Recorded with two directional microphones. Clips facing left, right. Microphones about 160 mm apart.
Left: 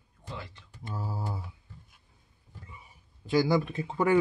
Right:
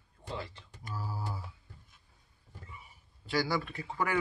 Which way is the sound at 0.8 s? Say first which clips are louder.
Left 4 dB; 25° left (ahead or behind).